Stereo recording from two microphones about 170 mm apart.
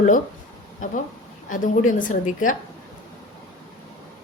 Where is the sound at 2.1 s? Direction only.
50° left (ahead or behind).